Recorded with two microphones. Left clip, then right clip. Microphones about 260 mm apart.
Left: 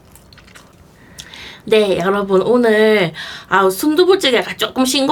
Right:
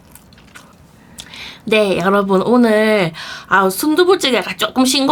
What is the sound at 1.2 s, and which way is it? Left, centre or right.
Speech, centre.